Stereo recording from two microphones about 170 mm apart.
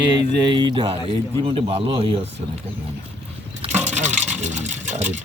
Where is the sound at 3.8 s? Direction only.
45° right (ahead or behind).